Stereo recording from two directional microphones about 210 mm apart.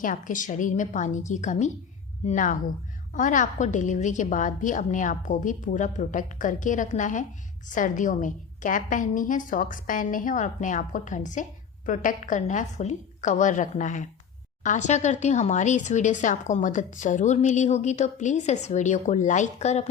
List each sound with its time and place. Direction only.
0.0 s speech: 40° left (ahead or behind)